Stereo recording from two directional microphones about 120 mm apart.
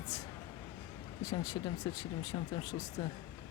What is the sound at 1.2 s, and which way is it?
Speech, 30° left (ahead or behind).